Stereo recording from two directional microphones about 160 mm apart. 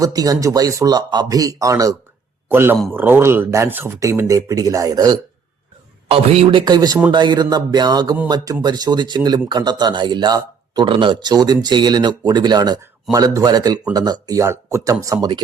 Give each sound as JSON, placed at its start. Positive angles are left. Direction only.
{"t": 0.0, "sound": "speech", "side_deg": -25}
{"t": 6.1, "sound": "a man's voice", "side_deg": -35}